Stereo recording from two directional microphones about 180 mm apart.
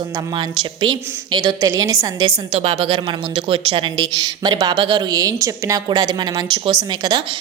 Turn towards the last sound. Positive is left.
turn(degrees=-25)  # may be behind; listen again after turning